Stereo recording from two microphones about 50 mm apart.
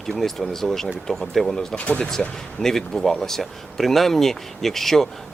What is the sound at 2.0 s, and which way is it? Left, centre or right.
Speech, centre.